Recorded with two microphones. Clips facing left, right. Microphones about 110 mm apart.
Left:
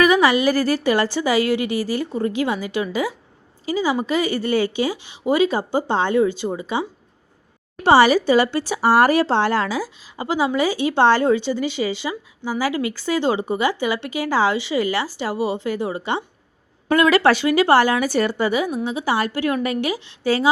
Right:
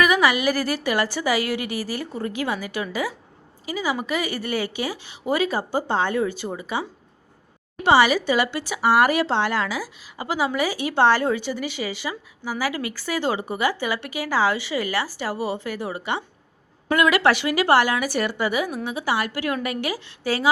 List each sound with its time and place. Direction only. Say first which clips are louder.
0.0 s speech: left 4 dB; 30° left (ahead or behind)
7.9 s speech: left 4 dB; 35° left (ahead or behind)